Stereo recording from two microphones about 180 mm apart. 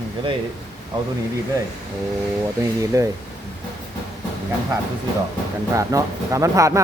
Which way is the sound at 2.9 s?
15° right (ahead or behind).